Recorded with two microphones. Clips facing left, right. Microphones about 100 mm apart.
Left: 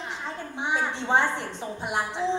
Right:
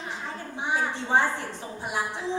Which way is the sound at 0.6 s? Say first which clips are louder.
Left 1 dB; 20° left (ahead or behind).